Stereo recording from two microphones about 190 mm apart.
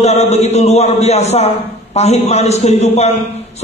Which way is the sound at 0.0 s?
35° left (ahead or behind).